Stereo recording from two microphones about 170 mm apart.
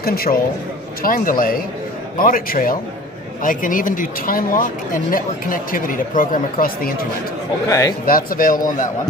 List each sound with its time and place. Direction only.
0.0 s speech: 60° left (ahead or behind)
7.6 s a man's voice: 20° left (ahead or behind)
8.0 s speech: 55° left (ahead or behind)